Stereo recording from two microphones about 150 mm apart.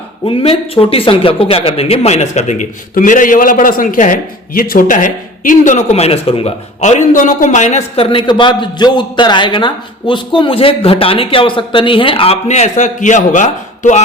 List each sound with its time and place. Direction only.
0.3 s speech: 35° left (ahead or behind)
8.1 s a man's voice: 30° left (ahead or behind); by 14.0 s 55° left (ahead or behind)